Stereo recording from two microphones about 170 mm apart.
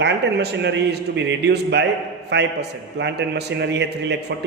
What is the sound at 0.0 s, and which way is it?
A man's voice, 85° right.